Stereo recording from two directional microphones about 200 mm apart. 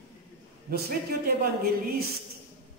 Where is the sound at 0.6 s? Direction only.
50° right (ahead or behind).